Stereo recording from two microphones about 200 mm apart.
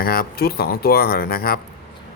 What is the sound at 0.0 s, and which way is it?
Speech, 50° left (ahead or behind).